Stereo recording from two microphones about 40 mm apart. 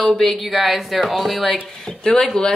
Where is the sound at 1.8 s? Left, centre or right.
Centre.